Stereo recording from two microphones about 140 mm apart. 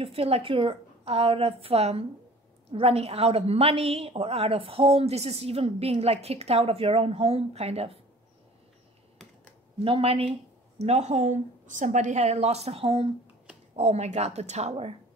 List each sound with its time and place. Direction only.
0.0 s a woman's voice: 45° right (ahead or behind)
9.8 s a woman's voice: 40° right (ahead or behind)